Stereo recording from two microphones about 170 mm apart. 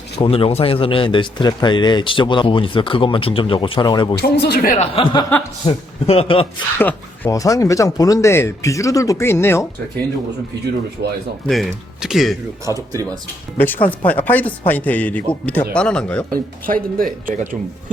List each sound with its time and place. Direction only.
0.2 s a man's voice: 35° left (ahead or behind)
4.2 s speech: 70° left (ahead or behind)
4.8 s a man's voice: 30° left (ahead or behind)
6.7 s a man's voice: 10° left (ahead or behind)
11.4 s speech: centre (ahead or behind)
12.6 s speech: 20° right (ahead or behind)
13.6 s a man's voice: 10° left (ahead or behind)
16.3 s speech: 55° right (ahead or behind)